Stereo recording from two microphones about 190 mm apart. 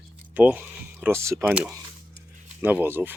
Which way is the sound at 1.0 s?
15° right (ahead or behind).